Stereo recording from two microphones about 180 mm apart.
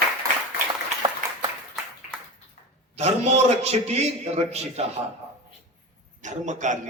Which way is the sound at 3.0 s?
35° right (ahead or behind).